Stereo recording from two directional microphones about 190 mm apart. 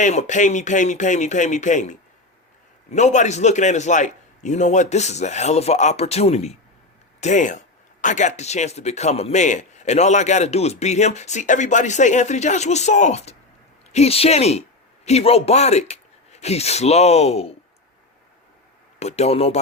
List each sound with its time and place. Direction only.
0.0 s a man's voice: 40° left (ahead or behind)
18.9 s a man's voice: 35° left (ahead or behind)